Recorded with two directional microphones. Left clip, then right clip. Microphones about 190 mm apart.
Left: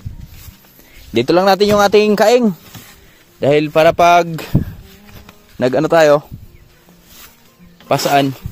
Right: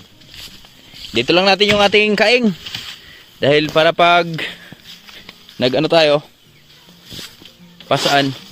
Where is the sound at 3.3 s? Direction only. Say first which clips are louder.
Left 1 dB; 20° left (ahead or behind).